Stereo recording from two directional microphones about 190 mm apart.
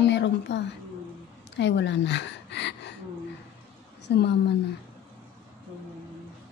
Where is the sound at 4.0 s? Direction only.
65° left (ahead or behind).